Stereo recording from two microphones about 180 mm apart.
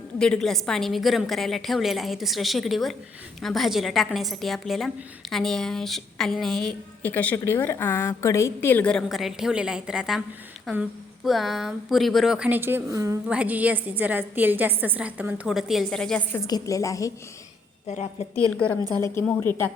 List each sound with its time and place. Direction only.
0.2 s a woman's voice: 5° left (ahead or behind); by 13.1 s 20° right (ahead or behind)
13.2 s a woman's voice: 5° right (ahead or behind)
16.4 s a woman's voice: 20° left (ahead or behind)
17.8 s a woman's voice: 40° left (ahead or behind)
18.3 s speech: 5° left (ahead or behind)